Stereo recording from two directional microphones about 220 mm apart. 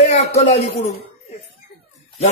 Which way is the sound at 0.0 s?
30° left (ahead or behind).